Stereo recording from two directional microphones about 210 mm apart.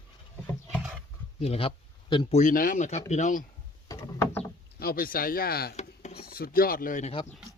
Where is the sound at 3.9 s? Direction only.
10° left (ahead or behind).